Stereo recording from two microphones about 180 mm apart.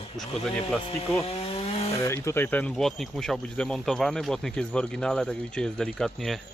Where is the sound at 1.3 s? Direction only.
30° left (ahead or behind).